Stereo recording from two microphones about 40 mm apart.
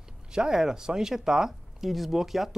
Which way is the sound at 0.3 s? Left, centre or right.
Centre.